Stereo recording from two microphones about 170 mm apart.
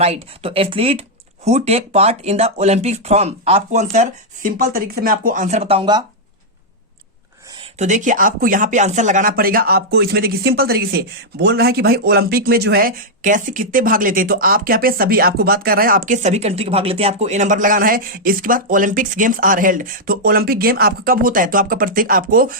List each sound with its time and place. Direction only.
0.0 s speech: 35° right (ahead or behind)
7.8 s speech: 45° right (ahead or behind)